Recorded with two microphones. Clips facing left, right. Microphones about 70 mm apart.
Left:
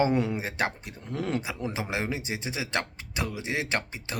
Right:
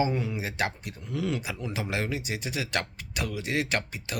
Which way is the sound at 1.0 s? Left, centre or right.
Left.